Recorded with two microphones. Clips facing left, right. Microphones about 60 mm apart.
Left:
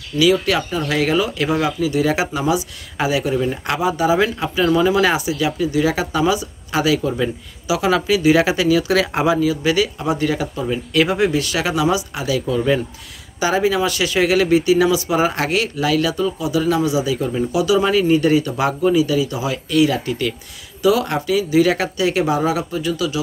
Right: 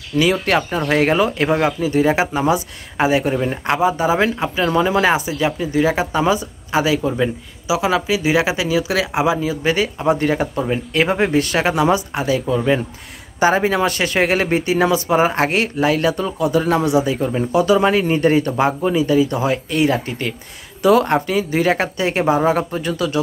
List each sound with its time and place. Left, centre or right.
0.2 s speech: right
6.7 s speech: right
9.4 s speech: right
10.6 s speech: right
13.4 s speech: right
18.7 s speech: right